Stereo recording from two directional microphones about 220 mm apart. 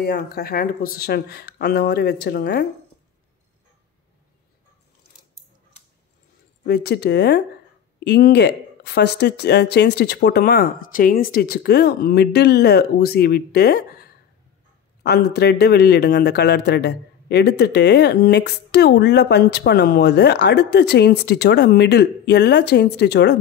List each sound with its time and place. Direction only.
0.0 s speech: 45° left (ahead or behind)
6.6 s speech: 45° left (ahead or behind)
15.0 s speech: 50° left (ahead or behind)